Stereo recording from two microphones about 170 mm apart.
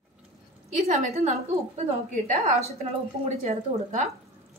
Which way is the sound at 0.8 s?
40° right (ahead or behind).